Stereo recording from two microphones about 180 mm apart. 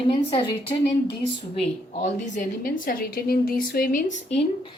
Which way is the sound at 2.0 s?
40° left (ahead or behind).